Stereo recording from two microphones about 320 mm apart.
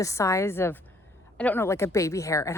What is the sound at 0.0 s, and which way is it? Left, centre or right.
A woman's voice, centre.